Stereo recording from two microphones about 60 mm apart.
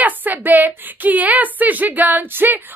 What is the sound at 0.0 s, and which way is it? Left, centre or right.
A woman's voice, right.